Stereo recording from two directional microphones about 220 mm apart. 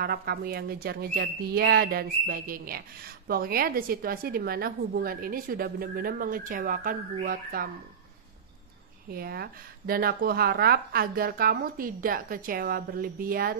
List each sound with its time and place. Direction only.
0.0 s a woman's voice: 45° right (ahead or behind)
9.1 s speech: 45° right (ahead or behind)